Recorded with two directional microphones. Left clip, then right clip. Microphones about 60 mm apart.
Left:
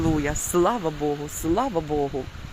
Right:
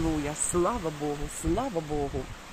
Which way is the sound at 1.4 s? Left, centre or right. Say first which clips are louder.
Left 6 dB; centre.